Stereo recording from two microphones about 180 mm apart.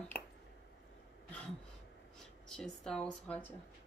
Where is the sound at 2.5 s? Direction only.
5° left (ahead or behind).